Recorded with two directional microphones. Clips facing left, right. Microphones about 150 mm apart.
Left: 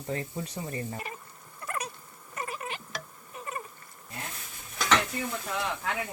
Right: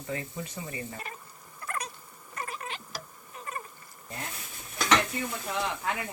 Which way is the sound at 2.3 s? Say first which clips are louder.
Left 2 dB; 5° left (ahead or behind).